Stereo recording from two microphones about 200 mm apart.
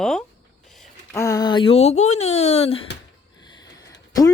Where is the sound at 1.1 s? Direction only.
15° left (ahead or behind).